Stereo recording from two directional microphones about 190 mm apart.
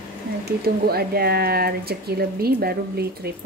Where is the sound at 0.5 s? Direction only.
55° right (ahead or behind).